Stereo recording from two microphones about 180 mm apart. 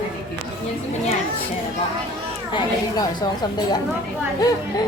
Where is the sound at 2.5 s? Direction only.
25° left (ahead or behind).